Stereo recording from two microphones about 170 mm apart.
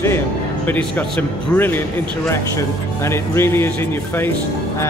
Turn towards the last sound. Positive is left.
turn(degrees=15)  # may be behind; listen again after turning